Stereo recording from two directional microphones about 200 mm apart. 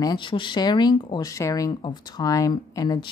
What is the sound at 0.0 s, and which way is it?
Speech, 20° left (ahead or behind).